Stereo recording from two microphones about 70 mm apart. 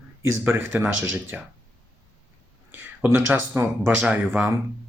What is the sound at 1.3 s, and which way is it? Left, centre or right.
Speech, right.